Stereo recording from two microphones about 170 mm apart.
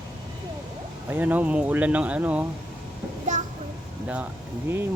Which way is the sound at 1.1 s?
10° right (ahead or behind).